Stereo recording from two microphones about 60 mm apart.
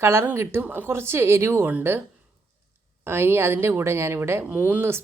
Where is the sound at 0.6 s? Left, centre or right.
Right.